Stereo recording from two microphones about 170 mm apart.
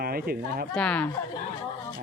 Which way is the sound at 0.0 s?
60° right (ahead or behind).